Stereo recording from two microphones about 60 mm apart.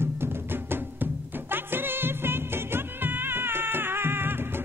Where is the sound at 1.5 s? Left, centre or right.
Right.